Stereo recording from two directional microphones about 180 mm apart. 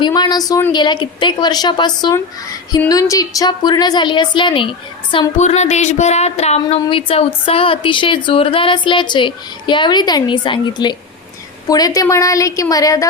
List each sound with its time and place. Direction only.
0.0 s a woman's voice: 20° left (ahead or behind)
5.4 s a woman's voice: 40° left (ahead or behind); by 13.1 s 20° left (ahead or behind)